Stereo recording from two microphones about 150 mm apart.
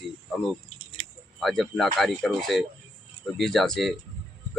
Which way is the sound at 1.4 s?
Centre (ahead or behind).